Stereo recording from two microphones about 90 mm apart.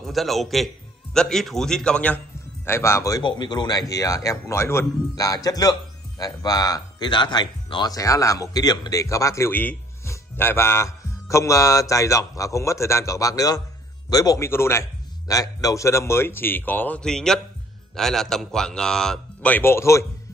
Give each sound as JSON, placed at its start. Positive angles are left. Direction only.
{"t": 0.0, "sound": "a man's voice", "side_deg": 0}
{"t": 2.6, "sound": "music", "side_deg": 30}
{"t": 3.2, "sound": "music", "side_deg": 55}
{"t": 5.1, "sound": "speech", "side_deg": 40}
{"t": 9.0, "sound": "music", "side_deg": 35}
{"t": 9.5, "sound": "a man's voice", "side_deg": 20}
{"t": 10.0, "sound": "music", "side_deg": 25}
{"t": 14.1, "sound": "speech", "side_deg": 45}
{"t": 14.4, "sound": "a man's voice", "side_deg": 30}
{"t": 17.0, "sound": "a man's voice", "side_deg": 5}
{"t": 19.5, "sound": "music", "side_deg": 30}